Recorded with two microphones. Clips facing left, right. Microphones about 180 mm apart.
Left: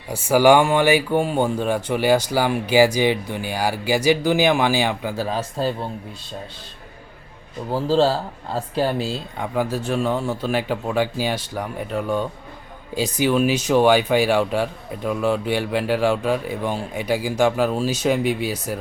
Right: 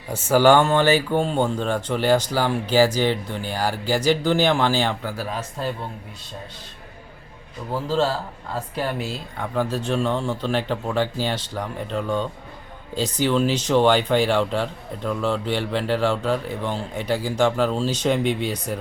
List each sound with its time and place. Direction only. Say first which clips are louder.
0.1 s speech: left 1 dB; 10° left (ahead or behind)
5.1 s speech: left 5 dB; 30° left (ahead or behind)
7.7 s speech: left 4 dB; 30° left (ahead or behind)
9.4 s speech: left 1 dB; 10° left (ahead or behind)